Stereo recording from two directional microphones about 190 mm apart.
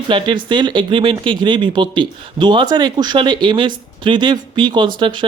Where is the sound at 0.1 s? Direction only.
25° right (ahead or behind).